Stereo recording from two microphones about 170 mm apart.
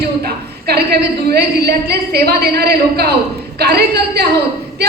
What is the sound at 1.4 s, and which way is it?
A woman's voice, 70° right (ahead or behind).